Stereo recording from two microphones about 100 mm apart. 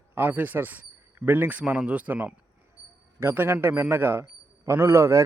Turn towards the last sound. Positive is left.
turn(degrees=-30)  # may be behind; listen again after turning